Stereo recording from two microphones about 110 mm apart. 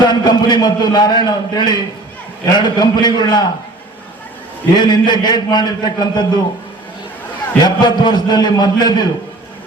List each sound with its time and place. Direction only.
0.0 s a man's voice: 40° left (ahead or behind)
4.7 s a man's voice: 40° left (ahead or behind)
7.6 s a man's voice: 40° left (ahead or behind)